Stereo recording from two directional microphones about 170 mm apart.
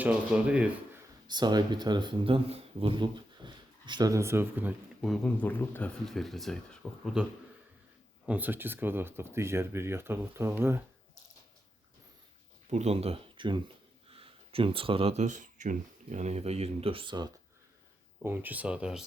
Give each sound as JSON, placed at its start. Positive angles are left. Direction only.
{"t": 0.0, "sound": "speech", "side_deg": -5}
{"t": 1.3, "sound": "speech", "side_deg": -25}
{"t": 8.3, "sound": "speech", "side_deg": -10}
{"t": 12.7, "sound": "speech", "side_deg": -40}
{"t": 18.2, "sound": "speech", "side_deg": -10}